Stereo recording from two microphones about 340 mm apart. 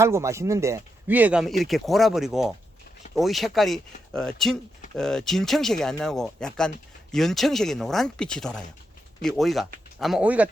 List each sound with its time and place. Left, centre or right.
0.0 s speech: centre